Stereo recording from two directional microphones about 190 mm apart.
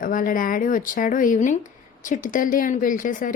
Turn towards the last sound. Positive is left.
turn(degrees=45)  # may be behind; listen again after turning